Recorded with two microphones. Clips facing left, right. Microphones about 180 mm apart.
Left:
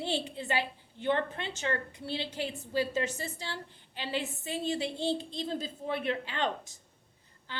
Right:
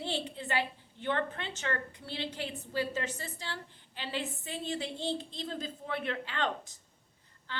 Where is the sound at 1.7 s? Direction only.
25° left (ahead or behind).